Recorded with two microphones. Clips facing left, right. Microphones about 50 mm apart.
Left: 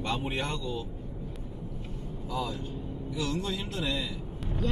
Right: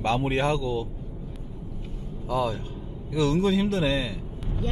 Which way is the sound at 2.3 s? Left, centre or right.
Right.